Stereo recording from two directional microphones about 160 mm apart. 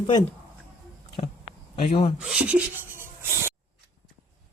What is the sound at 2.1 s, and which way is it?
Speech, 5° right (ahead or behind).